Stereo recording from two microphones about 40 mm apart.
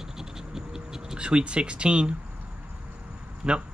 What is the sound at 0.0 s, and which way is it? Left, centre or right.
Scratch, centre.